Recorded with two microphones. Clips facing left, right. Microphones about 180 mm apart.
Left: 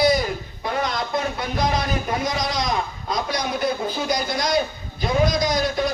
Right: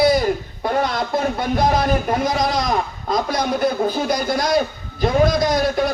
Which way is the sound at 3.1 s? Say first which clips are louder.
Right 5 dB; 50° right (ahead or behind).